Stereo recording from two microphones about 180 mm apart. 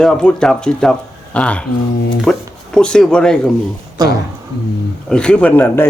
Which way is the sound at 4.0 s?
20° right (ahead or behind).